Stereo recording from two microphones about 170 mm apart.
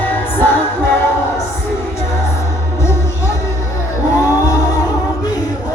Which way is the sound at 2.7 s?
15° left (ahead or behind).